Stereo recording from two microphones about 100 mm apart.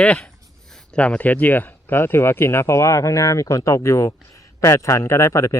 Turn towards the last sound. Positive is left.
turn(degrees=30)  # may be behind; listen again after turning